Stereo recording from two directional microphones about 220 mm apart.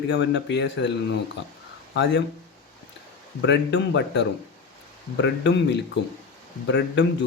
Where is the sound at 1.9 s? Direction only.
55° left (ahead or behind).